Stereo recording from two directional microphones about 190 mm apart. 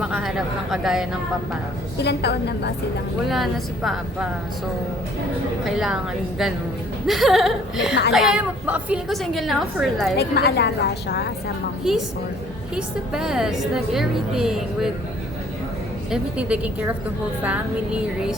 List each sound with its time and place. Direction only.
0.0 s a woman's voice: 5° right (ahead or behind)
2.0 s a woman's voice: 60° left (ahead or behind)
3.2 s a woman's voice: centre (ahead or behind)
5.6 s a woman's voice: centre (ahead or behind)
7.1 s a woman's voice: centre (ahead or behind)
10.2 s a woman's voice: 55° left (ahead or behind)
11.8 s a woman's voice: centre (ahead or behind)
16.0 s a woman's voice: 5° right (ahead or behind)